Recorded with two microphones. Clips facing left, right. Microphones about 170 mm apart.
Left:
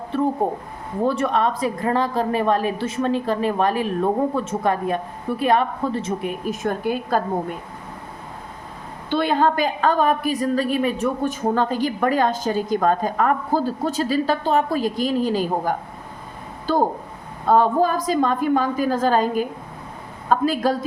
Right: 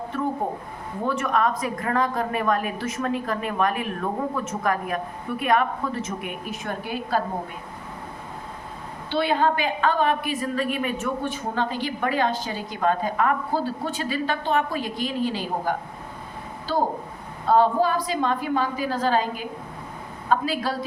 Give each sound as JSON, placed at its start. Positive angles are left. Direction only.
{"t": 0.1, "sound": "a woman's voice", "side_deg": 30}
{"t": 9.0, "sound": "a woman's voice", "side_deg": 45}
{"t": 17.5, "sound": "a woman's voice", "side_deg": 45}